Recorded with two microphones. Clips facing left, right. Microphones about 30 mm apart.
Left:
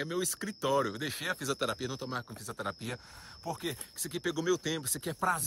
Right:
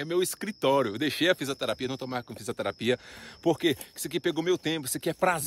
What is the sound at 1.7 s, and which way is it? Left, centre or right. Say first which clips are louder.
Speech: right 5 dB; right.